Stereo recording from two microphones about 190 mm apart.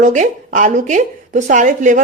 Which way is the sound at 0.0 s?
40° right (ahead or behind).